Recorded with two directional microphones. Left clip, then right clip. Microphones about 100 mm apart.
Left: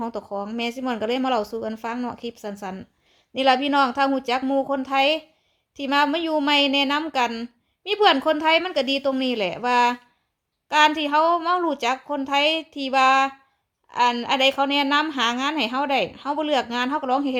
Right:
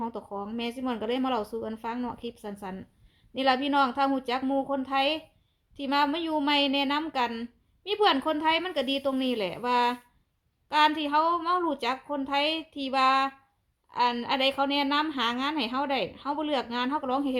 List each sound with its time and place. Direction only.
0.0 s a woman's voice: 30° left (ahead or behind)